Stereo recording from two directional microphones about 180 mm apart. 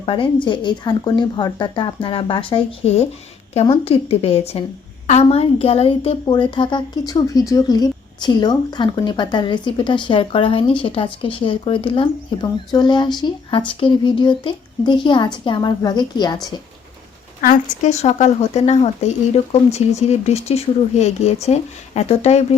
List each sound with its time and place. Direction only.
0.0 s a woman's voice: 30° left (ahead or behind)
17.4 s a woman's voice: 45° left (ahead or behind)